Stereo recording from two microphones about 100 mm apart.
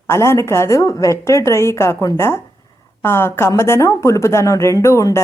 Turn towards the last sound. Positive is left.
turn(degrees=30)  # may be behind; listen again after turning